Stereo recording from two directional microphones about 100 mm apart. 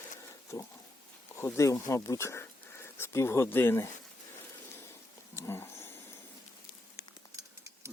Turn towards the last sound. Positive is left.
turn(degrees=-30)  # may be behind; listen again after turning